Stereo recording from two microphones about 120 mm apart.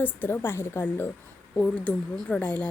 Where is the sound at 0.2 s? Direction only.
20° left (ahead or behind).